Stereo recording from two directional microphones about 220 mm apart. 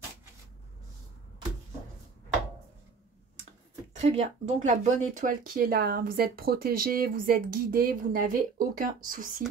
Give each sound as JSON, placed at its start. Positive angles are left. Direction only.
{"t": 3.9, "sound": "speech", "side_deg": -30}